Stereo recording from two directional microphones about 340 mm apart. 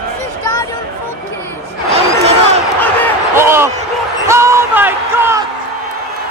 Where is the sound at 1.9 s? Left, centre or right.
Centre.